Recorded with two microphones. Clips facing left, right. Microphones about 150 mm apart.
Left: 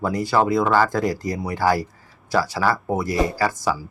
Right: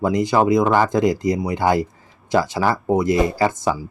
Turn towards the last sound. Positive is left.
turn(degrees=-20)  # may be behind; listen again after turning